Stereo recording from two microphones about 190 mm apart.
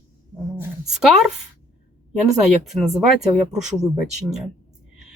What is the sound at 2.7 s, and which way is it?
Speech, centre (ahead or behind).